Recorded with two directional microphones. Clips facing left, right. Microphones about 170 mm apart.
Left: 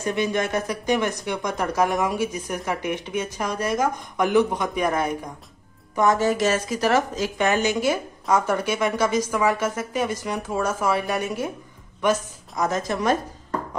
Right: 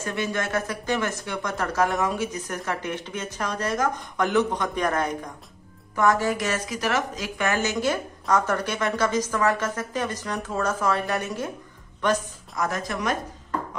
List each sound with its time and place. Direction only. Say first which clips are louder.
0.0 s a woman's voice: left 4 dB; 15° left (ahead or behind)
5.9 s a woman's voice: left 2 dB; 20° left (ahead or behind)
12.6 s a woman's voice: left 4 dB; 25° left (ahead or behind)